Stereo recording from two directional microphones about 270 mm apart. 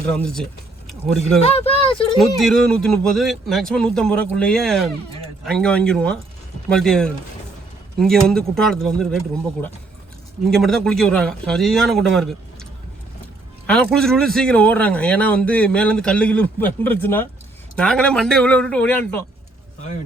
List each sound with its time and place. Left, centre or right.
0.1 s speech: centre
1.5 s speech: left
2.1 s speech: centre
10.5 s speech: centre
13.7 s speech: centre